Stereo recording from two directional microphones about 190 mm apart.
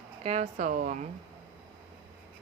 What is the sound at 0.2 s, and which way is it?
Speech, 35° right (ahead or behind).